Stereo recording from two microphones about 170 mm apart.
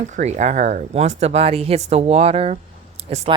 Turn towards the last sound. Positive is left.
turn(degrees=-35)  # may be behind; listen again after turning